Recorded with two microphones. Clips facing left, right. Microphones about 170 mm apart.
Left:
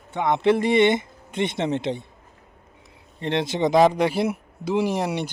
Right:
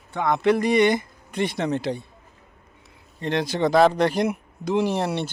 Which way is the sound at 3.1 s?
25° left (ahead or behind).